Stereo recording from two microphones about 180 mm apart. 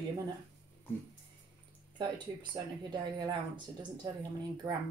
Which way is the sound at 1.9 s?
25° right (ahead or behind).